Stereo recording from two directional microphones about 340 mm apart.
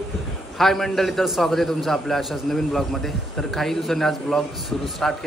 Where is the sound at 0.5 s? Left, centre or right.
Centre.